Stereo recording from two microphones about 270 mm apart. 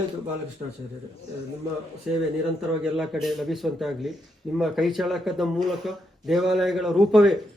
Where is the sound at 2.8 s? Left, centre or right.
Centre.